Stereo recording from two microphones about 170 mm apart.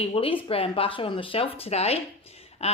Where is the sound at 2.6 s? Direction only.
35° left (ahead or behind).